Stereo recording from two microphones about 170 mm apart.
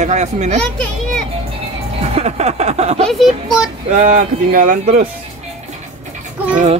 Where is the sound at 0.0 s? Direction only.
45° right (ahead or behind).